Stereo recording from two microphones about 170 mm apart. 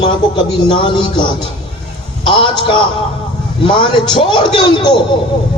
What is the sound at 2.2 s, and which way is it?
A man's voice, 30° left (ahead or behind).